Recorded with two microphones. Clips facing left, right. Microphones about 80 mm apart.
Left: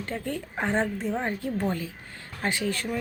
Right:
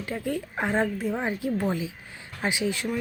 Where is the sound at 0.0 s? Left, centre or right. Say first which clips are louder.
Right 2 dB; centre.